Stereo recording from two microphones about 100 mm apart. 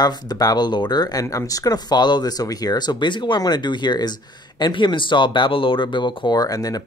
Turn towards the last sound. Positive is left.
turn(degrees=40)  # may be behind; listen again after turning